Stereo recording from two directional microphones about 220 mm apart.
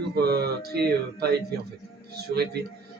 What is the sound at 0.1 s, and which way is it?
Speech, 45° right (ahead or behind).